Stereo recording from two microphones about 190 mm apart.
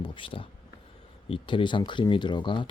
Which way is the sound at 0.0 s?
25° left (ahead or behind).